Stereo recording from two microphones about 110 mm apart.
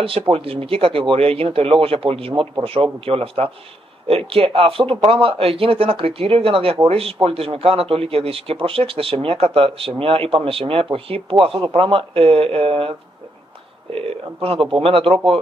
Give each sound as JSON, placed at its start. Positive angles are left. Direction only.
{"t": 0.3, "sound": "a man's voice", "side_deg": -60}
{"t": 13.9, "sound": "a man's voice", "side_deg": -60}